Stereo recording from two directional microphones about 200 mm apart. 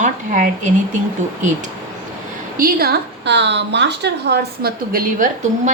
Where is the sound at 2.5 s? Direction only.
50° right (ahead or behind).